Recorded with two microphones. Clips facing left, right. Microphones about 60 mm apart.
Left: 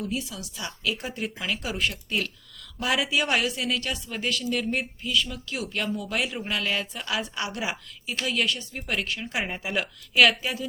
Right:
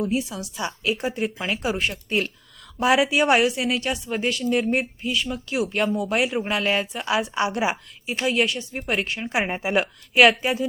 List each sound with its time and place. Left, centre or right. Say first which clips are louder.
0.0 s speech: right 7 dB; right